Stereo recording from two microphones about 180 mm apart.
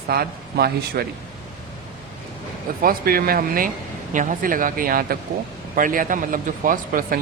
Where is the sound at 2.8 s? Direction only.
55° right (ahead or behind).